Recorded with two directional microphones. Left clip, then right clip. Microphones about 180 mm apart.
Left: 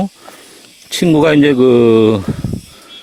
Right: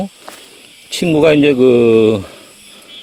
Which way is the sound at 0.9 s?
25° left (ahead or behind).